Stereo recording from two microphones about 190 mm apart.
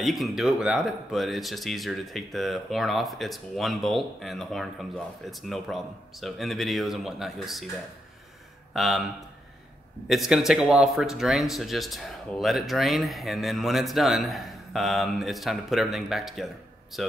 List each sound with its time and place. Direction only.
0.0 s speech: centre (ahead or behind)
10.0 s speech: centre (ahead or behind)